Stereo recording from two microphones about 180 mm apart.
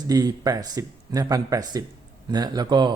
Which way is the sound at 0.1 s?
20° right (ahead or behind).